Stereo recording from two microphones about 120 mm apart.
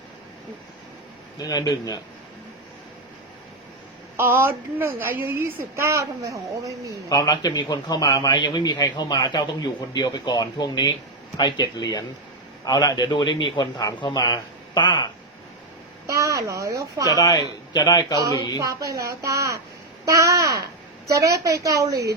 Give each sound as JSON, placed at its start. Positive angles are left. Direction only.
{"t": 1.4, "sound": "a man's voice", "side_deg": 35}
{"t": 4.2, "sound": "a woman's voice", "side_deg": -20}
{"t": 7.1, "sound": "a man's voice", "side_deg": 30}
{"t": 16.0, "sound": "speech", "side_deg": -25}
{"t": 17.1, "sound": "a man's voice", "side_deg": 35}
{"t": 18.2, "sound": "a woman's voice", "side_deg": -30}